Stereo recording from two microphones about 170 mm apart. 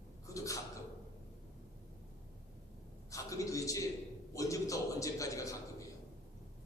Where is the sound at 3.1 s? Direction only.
20° left (ahead or behind).